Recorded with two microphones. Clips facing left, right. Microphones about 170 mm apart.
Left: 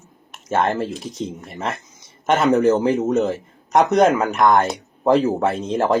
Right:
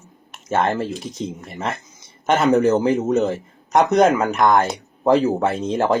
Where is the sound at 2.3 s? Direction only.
35° right (ahead or behind).